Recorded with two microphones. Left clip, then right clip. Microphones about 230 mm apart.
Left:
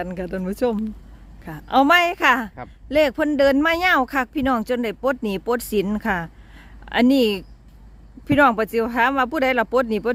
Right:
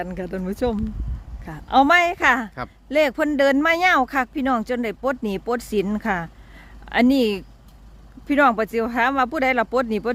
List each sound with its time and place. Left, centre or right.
0.0 s speech: centre